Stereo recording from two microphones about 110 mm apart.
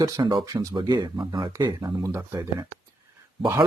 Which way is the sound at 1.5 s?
30° right (ahead or behind).